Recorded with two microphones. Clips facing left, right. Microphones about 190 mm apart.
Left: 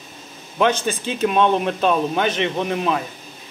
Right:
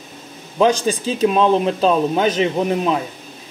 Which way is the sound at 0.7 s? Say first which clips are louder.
Right 4 dB; 35° right (ahead or behind).